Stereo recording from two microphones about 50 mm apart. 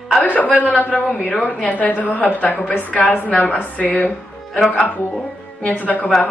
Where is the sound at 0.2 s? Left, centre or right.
Left.